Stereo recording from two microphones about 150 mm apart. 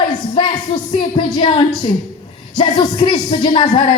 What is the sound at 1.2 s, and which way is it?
Music, 30° left (ahead or behind).